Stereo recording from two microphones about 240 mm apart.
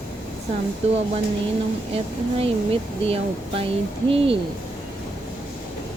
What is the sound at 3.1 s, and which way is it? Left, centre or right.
Speech, right.